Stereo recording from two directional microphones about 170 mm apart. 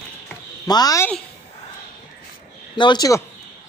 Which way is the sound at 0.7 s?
25° left (ahead or behind).